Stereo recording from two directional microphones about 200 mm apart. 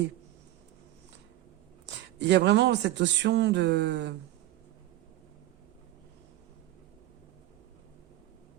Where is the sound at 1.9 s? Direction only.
60° right (ahead or behind).